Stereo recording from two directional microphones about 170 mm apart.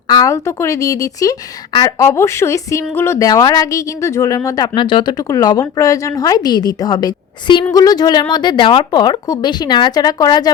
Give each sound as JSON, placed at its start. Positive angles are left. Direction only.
{"t": 0.1, "sound": "a woman's voice", "side_deg": 20}